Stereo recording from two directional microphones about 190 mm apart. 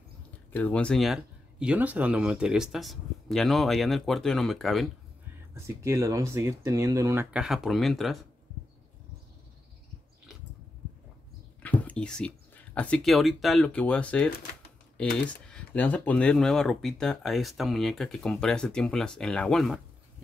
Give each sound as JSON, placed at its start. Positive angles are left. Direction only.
{"t": 0.5, "sound": "speech", "side_deg": 10}
{"t": 5.5, "sound": "speech", "side_deg": -15}
{"t": 7.3, "sound": "speech", "side_deg": 0}
{"t": 11.6, "sound": "speech", "side_deg": 5}